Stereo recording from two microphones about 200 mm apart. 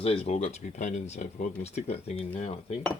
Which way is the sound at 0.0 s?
30° left (ahead or behind).